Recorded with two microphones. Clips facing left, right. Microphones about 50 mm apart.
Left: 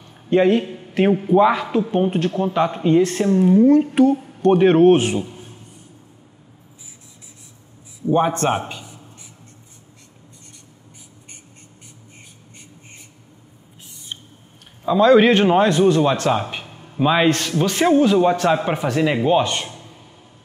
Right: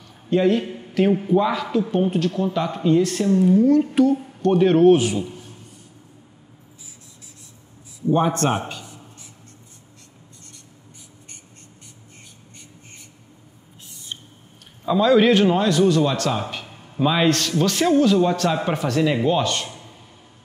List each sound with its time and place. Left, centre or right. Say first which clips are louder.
0.3 s a man's voice: left 3 dB; left
8.1 s a man's voice: left 2 dB; centre
15.0 s a man's voice: left 3 dB; left
16.7 s a sound: left 2 dB; centre
17.0 s a man's voice: left 2 dB; centre